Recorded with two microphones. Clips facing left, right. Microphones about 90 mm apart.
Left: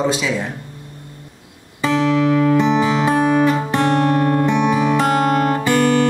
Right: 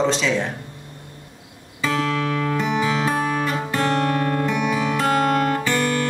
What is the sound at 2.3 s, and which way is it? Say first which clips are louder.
Music: left 7 dB; 25° left (ahead or behind).